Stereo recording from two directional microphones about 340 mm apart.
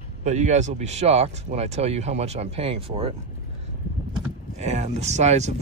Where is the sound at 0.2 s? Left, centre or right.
Right.